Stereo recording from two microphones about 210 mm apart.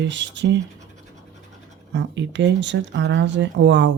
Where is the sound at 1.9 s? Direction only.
55° right (ahead or behind).